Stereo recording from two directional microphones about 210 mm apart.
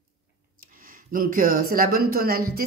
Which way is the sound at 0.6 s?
40° right (ahead or behind).